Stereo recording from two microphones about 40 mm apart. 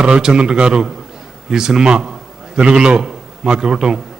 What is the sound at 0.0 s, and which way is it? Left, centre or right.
A man's voice, right.